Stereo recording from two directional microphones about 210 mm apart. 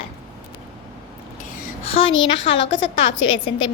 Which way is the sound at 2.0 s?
25° left (ahead or behind).